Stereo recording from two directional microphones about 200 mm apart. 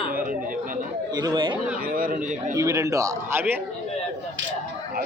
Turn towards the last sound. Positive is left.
turn(degrees=-10)  # may be behind; listen again after turning